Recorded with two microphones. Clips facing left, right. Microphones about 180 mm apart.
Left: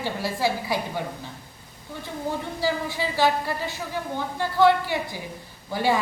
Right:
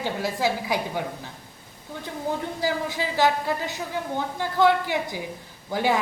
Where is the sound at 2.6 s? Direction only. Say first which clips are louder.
Left 1 dB; 15° right (ahead or behind).